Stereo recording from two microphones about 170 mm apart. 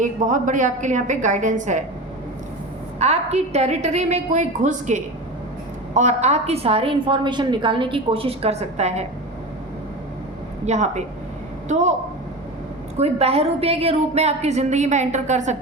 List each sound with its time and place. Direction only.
0.0 s a woman's voice: 50° right (ahead or behind)
3.0 s a woman's voice: 40° right (ahead or behind)
10.7 s a woman's voice: 40° right (ahead or behind)
13.0 s a woman's voice: 35° right (ahead or behind)